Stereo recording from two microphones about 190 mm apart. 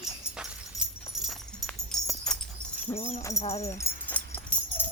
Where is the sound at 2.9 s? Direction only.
35° left (ahead or behind).